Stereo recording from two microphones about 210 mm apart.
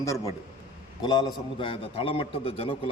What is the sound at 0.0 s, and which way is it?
A man's voice, 15° left (ahead or behind).